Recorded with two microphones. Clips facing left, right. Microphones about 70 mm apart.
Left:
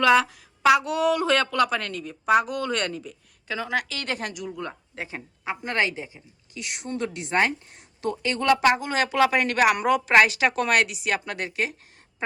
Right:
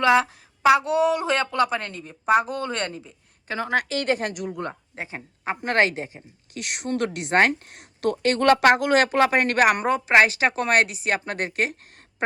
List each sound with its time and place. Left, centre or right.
0.0 s a woman's voice: right
4.9 s speech: right
5.6 s a woman's voice: right
9.1 s speech: right
10.1 s speech: right